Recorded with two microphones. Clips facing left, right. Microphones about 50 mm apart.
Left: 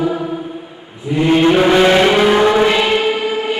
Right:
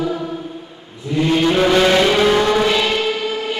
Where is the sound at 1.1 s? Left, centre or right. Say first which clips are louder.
Left 4 dB; left.